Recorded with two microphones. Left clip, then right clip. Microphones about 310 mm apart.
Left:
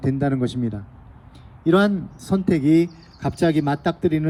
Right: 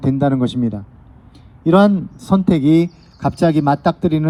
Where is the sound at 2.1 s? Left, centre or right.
Right.